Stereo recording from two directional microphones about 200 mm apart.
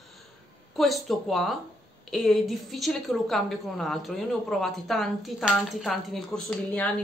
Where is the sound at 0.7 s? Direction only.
Centre (ahead or behind).